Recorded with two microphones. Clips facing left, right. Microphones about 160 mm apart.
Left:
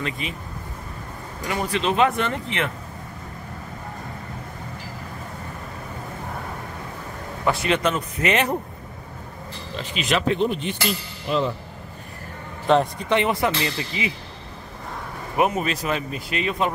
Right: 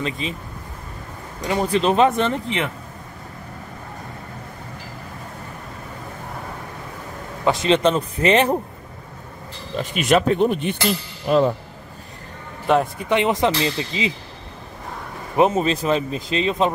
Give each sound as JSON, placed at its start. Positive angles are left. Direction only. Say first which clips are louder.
{"t": 0.2, "sound": "speech", "louder": "right 4 dB", "side_deg": -25}
{"t": 1.4, "sound": "speech", "louder": "right 5 dB", "side_deg": -25}
{"t": 1.8, "sound": "speech", "louder": "right 3 dB", "side_deg": -40}
{"t": 2.0, "sound": "speech", "louder": "right 4 dB", "side_deg": -25}
{"t": 7.6, "sound": "speech", "louder": "right 5 dB", "side_deg": -30}
{"t": 9.8, "sound": "speech", "louder": "right 6 dB", "side_deg": -50}
{"t": 12.6, "sound": "speech", "louder": "even", "side_deg": -15}
{"t": 15.3, "sound": "speech", "louder": "right 4 dB", "side_deg": -25}